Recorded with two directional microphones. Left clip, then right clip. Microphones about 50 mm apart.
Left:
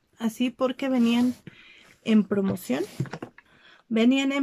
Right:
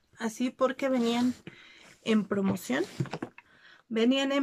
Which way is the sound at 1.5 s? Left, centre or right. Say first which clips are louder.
Left 1 dB; centre.